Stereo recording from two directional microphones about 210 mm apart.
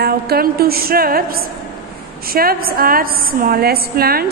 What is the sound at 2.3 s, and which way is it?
A woman's voice, 45° right (ahead or behind).